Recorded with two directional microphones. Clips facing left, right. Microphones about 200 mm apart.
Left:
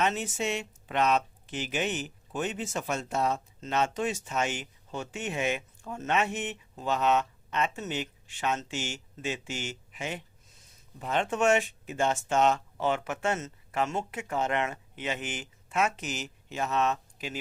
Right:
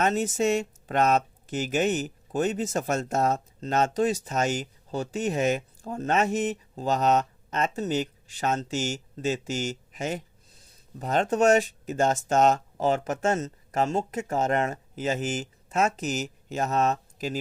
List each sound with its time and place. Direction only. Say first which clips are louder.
0.0 s speech: right 6 dB; 40° right (ahead or behind)